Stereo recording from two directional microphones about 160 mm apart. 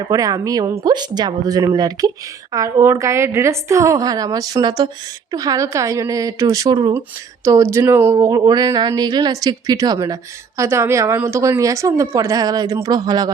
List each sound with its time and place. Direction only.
0.1 s speech: 20° right (ahead or behind)